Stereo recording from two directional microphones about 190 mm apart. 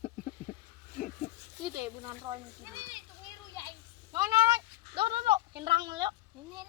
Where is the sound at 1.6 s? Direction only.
20° right (ahead or behind).